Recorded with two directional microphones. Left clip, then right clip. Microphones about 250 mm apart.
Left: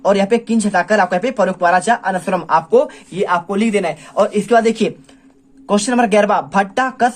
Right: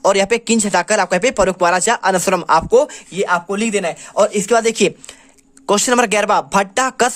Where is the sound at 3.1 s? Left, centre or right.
Centre.